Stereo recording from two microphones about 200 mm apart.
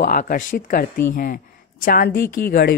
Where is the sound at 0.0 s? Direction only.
45° left (ahead or behind).